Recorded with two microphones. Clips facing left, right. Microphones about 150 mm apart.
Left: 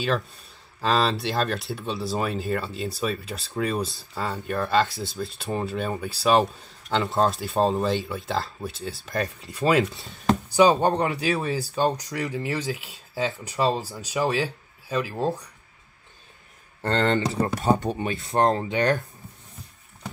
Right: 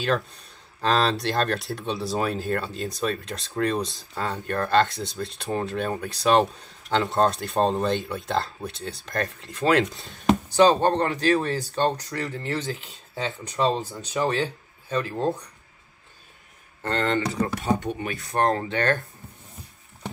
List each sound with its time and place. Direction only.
0.7 s speech: centre (ahead or behind)
16.8 s speech: 30° left (ahead or behind)
17.6 s speech: 35° left (ahead or behind)
18.0 s speech: 25° left (ahead or behind)